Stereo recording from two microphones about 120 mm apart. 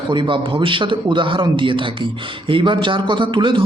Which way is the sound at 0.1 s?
45° right (ahead or behind).